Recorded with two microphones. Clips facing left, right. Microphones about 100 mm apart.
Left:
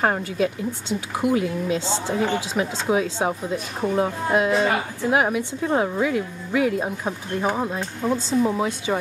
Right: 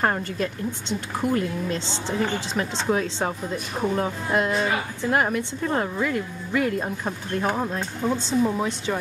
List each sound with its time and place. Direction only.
0.0 s a woman's voice: 5° left (ahead or behind)